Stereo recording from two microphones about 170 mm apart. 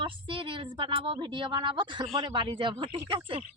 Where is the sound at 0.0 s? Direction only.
30° right (ahead or behind).